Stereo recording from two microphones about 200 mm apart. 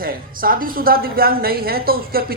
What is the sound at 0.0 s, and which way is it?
A woman's voice, 45° right (ahead or behind).